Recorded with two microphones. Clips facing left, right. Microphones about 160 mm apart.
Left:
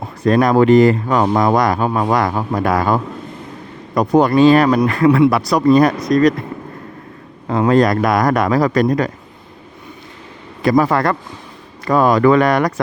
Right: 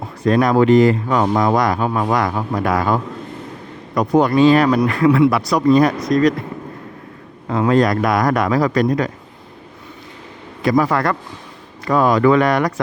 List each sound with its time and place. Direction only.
0.3 s speech: 45° left (ahead or behind)
7.4 s speech: 35° left (ahead or behind)
10.6 s speech: 40° left (ahead or behind)